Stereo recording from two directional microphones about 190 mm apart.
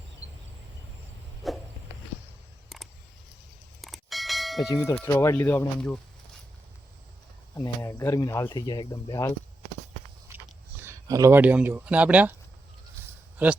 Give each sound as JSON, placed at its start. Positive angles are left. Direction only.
{"t": 1.4, "sound": "walk", "side_deg": 0}
{"t": 2.6, "sound": "a sound", "side_deg": 0}
{"t": 3.8, "sound": "bell", "side_deg": 0}
{"t": 4.7, "sound": "speech", "side_deg": 15}
{"t": 7.5, "sound": "speech", "side_deg": 10}
{"t": 10.2, "sound": "a sound", "side_deg": -10}